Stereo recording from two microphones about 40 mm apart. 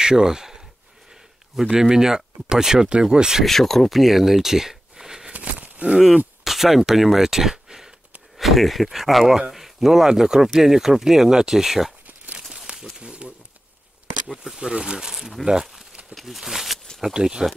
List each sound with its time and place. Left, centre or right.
0.0 s speech: centre
1.6 s speech: centre
3.4 s speech: centre
5.3 s a sound: right
6.4 s speech: centre
12.4 s a sound: centre
13.0 s speech: right
14.4 s speech: centre
15.9 s a sound: right
16.2 s speech: centre
17.1 s speech: centre